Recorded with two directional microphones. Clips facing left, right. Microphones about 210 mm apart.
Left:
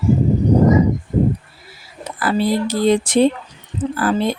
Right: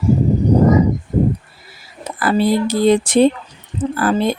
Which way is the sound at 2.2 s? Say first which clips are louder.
Right 2 dB; 50° right (ahead or behind).